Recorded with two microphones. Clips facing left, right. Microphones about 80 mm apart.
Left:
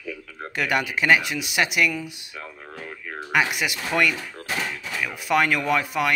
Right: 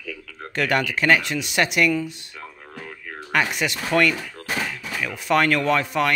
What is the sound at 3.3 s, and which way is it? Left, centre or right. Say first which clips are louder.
Speech: even; centre.